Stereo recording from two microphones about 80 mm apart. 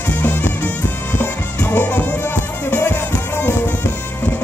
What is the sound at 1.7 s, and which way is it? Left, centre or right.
Music, centre.